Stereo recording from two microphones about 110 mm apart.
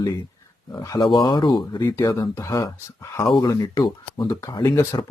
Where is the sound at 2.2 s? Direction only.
30° left (ahead or behind).